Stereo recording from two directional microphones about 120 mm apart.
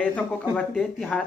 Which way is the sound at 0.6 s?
5° left (ahead or behind).